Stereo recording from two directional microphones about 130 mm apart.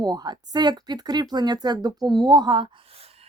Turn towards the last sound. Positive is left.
turn(degrees=-50)  # may be behind; listen again after turning